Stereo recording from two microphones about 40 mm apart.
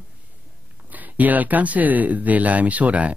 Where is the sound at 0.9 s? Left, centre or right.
Right.